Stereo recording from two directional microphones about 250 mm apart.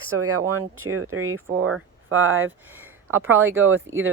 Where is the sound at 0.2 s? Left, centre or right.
Right.